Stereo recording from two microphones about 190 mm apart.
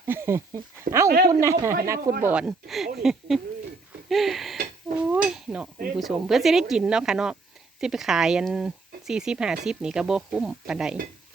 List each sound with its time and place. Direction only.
0.0 s speech: 15° right (ahead or behind)
2.3 s speech: 5° right (ahead or behind)
4.1 s dishes: centre (ahead or behind)
5.0 s a sound: 5° right (ahead or behind)
6.0 s speech: centre (ahead or behind)